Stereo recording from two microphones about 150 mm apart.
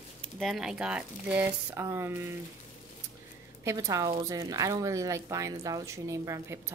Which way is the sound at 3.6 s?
20° right (ahead or behind).